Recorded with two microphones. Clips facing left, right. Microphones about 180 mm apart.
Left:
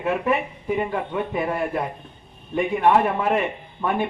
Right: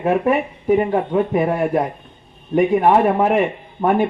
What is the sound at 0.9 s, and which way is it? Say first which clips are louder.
Speech: right 8 dB; 35° right (ahead or behind).